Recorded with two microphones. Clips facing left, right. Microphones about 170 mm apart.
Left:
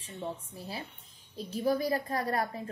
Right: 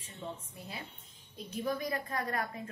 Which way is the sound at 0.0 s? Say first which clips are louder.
Left 5 dB; 30° left (ahead or behind).